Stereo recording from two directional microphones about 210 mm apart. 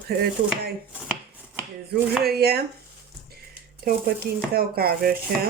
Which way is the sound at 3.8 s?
45° right (ahead or behind).